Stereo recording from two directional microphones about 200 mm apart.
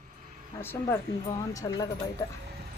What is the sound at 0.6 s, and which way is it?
Speech, 10° left (ahead or behind).